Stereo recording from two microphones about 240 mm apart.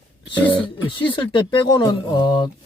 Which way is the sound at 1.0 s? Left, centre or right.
Centre.